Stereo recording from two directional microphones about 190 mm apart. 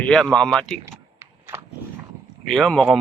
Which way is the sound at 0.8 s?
15° right (ahead or behind).